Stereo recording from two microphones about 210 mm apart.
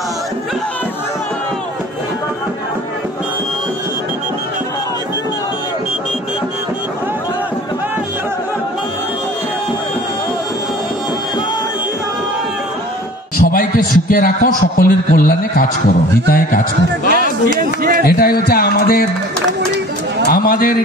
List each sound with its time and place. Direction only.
13.4 s a man's voice: 45° left (ahead or behind)
18.0 s music: 45° left (ahead or behind)
20.3 s a sound: 45° left (ahead or behind)